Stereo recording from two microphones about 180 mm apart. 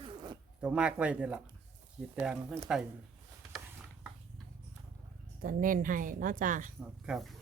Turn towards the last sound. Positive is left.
turn(degrees=0)  # may be behind; listen again after turning